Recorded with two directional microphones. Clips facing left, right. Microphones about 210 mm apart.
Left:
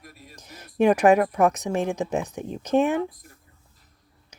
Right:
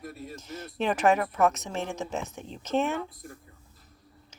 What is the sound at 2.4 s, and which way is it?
Speech, 55° left (ahead or behind).